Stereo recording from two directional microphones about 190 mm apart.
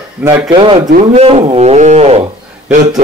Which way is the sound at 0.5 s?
30° right (ahead or behind).